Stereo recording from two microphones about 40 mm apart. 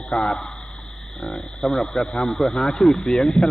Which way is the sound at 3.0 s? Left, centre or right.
Centre.